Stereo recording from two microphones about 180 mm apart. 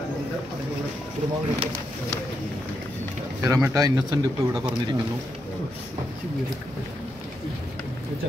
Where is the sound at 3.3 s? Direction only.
15° right (ahead or behind).